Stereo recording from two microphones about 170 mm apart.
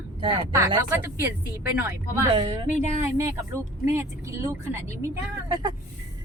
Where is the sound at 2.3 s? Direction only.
30° right (ahead or behind).